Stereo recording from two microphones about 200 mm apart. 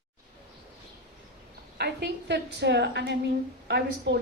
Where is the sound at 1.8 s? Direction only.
55° right (ahead or behind).